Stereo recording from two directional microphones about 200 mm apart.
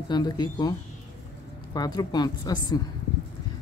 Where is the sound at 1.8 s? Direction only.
20° left (ahead or behind).